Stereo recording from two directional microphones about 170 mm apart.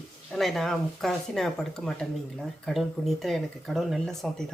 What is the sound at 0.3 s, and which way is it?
Speech, centre (ahead or behind).